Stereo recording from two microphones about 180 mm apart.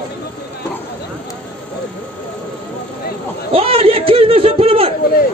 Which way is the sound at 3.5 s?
30° right (ahead or behind).